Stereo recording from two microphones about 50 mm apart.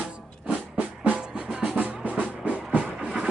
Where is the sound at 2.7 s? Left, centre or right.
Centre.